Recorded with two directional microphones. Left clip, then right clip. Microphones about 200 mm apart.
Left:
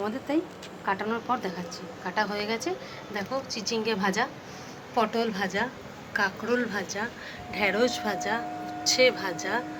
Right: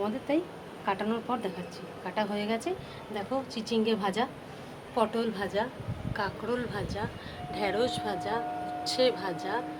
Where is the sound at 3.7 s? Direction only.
5° right (ahead or behind).